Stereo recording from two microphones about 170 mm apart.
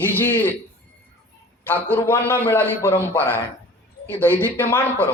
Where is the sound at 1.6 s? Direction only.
10° left (ahead or behind).